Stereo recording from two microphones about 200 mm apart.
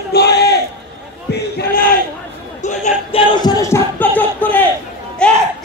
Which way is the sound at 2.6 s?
35° left (ahead or behind).